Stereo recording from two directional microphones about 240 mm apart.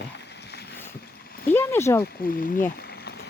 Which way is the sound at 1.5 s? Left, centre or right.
Centre.